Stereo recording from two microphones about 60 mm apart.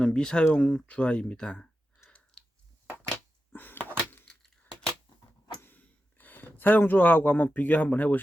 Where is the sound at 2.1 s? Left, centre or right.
Centre.